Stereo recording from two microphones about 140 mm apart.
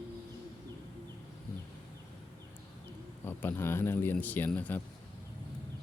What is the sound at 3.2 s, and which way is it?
Speech, 15° left (ahead or behind).